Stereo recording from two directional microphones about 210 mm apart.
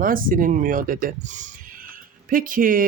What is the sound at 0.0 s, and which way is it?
Speech, 40° right (ahead or behind).